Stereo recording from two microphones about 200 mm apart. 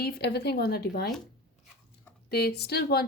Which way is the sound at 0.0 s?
55° left (ahead or behind).